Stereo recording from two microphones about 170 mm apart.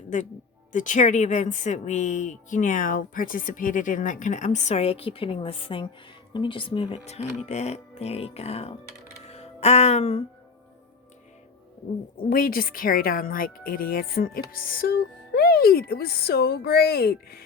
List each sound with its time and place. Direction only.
0.1 s speech: 45° left (ahead or behind)
9.2 s music: 40° left (ahead or behind)
12.3 s speech: 60° left (ahead or behind)